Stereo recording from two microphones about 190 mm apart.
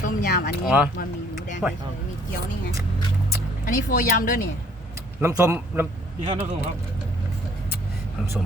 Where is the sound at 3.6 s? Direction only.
45° left (ahead or behind).